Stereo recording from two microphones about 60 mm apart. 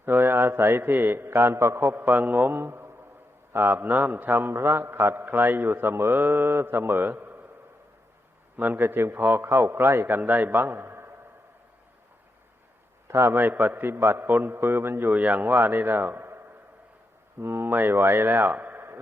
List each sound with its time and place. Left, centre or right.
0.0 s a man's voice: right
8.5 s a man's voice: right
13.1 s a man's voice: right
15.1 s a man's voice: right
17.4 s speech: right